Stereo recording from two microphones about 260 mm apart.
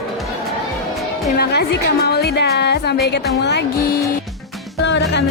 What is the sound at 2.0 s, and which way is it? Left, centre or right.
Speech, left.